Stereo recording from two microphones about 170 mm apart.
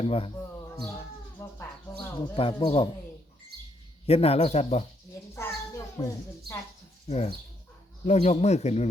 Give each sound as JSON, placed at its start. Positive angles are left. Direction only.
{"t": 0.0, "sound": "speech", "side_deg": 35}
{"t": 1.5, "sound": "a sound", "side_deg": 15}
{"t": 2.3, "sound": "speech", "side_deg": 30}
{"t": 4.0, "sound": "speech", "side_deg": 35}
{"t": 5.3, "sound": "a sound", "side_deg": 20}
{"t": 7.1, "sound": "speech", "side_deg": 40}